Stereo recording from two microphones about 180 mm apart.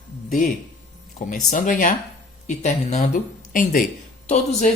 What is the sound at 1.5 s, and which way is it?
Speech, 45° left (ahead or behind).